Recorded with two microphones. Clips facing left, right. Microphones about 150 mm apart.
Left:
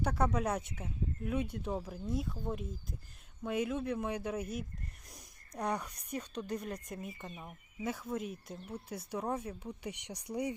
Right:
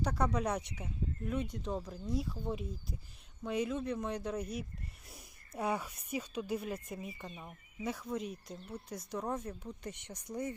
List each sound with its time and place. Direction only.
0.0 s speech: 5° left (ahead or behind)